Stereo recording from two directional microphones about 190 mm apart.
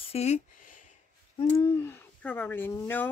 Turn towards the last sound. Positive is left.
turn(degrees=10)  # may be behind; listen again after turning